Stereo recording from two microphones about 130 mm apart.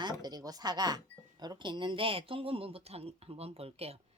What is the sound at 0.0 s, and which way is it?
Speech, 30° right (ahead or behind).